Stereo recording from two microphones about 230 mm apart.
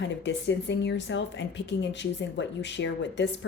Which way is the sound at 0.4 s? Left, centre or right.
Left.